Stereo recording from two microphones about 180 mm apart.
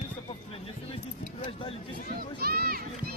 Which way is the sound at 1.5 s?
30° left (ahead or behind).